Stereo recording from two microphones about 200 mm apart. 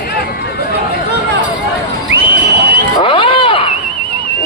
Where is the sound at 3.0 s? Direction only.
25° left (ahead or behind).